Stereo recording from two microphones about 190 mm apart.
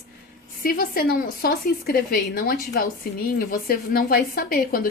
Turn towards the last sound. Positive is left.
turn(degrees=50)  # may be behind; listen again after turning